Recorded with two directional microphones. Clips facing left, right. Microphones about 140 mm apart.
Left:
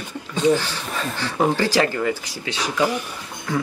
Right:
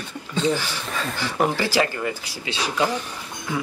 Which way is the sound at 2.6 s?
15° left (ahead or behind).